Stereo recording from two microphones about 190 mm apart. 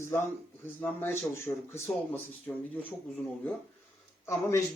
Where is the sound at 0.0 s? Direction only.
10° left (ahead or behind).